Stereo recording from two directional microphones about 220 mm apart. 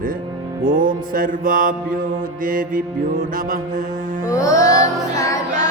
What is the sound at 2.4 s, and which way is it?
Mantra, 40° right (ahead or behind).